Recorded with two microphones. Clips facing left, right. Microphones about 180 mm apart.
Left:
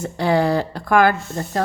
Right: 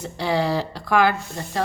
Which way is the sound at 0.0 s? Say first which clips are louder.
Left 4 dB; 50° left (ahead or behind).